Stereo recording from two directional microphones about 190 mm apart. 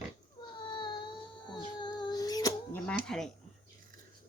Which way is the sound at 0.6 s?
25° left (ahead or behind).